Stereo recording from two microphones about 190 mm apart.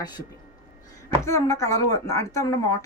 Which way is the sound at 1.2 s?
15° left (ahead or behind).